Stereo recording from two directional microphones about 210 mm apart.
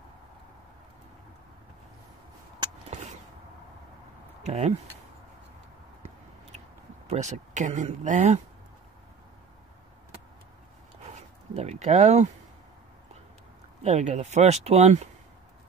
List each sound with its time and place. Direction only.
4.4 s speech: 30° right (ahead or behind)
7.1 s speech: 35° right (ahead or behind)
11.1 s speech: 30° right (ahead or behind)
13.8 s speech: 35° right (ahead or behind)